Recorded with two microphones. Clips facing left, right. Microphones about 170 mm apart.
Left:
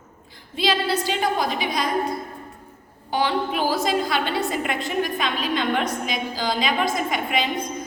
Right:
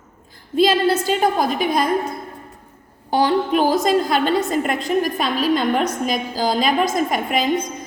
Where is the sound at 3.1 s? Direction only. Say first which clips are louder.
Right 6 dB; 40° right (ahead or behind).